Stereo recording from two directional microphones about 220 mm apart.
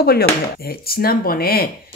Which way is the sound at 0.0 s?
45° left (ahead or behind).